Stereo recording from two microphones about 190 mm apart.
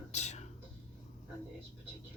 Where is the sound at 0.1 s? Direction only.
35° left (ahead or behind).